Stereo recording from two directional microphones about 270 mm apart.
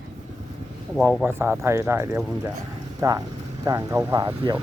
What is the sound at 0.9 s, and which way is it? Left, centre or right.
Speech, centre.